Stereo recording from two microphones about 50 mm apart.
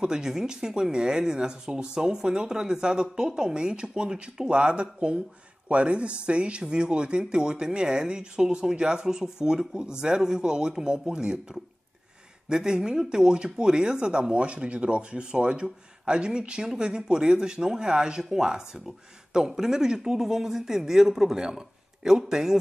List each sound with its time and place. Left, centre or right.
0.0 s speech: centre